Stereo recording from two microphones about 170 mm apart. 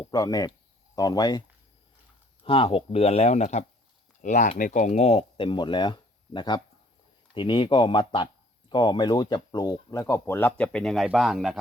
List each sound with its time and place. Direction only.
0.1 s speech: 20° left (ahead or behind); by 11.5 s centre (ahead or behind)